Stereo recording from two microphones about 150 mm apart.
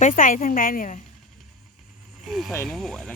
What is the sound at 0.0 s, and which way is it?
Speech, 60° left (ahead or behind).